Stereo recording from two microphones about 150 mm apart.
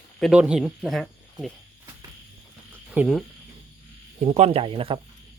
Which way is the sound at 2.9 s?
Centre (ahead or behind).